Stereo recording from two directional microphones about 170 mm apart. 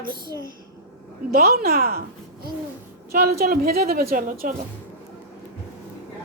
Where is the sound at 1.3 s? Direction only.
60° right (ahead or behind).